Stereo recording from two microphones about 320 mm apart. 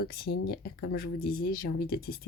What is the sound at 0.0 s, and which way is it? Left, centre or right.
Speech, left.